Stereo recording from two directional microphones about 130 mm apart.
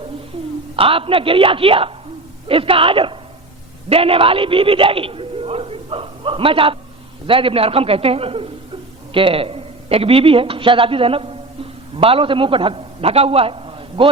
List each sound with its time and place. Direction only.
0.8 s a man's voice: 45° right (ahead or behind)